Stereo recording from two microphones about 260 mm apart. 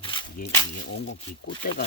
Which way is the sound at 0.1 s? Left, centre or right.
Centre.